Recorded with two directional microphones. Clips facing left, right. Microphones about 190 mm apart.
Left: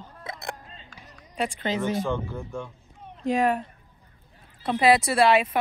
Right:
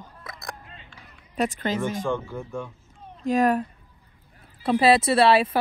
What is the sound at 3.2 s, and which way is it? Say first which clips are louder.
Speech: right 2 dB; 40° right (ahead or behind).